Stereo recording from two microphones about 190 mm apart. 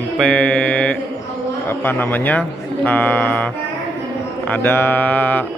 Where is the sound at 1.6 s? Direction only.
10° left (ahead or behind).